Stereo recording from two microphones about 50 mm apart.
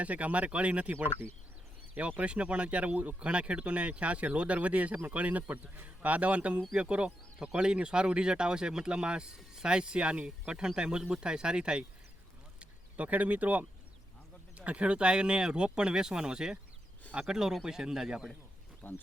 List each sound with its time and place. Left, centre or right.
0.0 s speech: right
2.0 s a man's voice: right
12.5 s a sound: right
14.5 s speech: right
18.8 s speech: left